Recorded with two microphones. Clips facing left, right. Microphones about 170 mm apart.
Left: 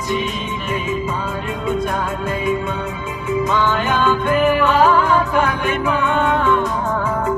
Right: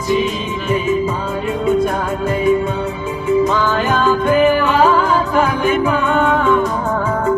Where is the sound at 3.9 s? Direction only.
35° right (ahead or behind).